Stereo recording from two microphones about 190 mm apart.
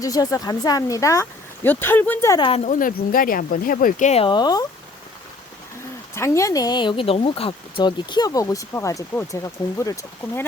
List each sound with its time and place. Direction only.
0.0 s speech: 20° left (ahead or behind)
2.5 s speech: 35° left (ahead or behind); by 4.6 s 20° left (ahead or behind)
6.1 s speech: 15° left (ahead or behind)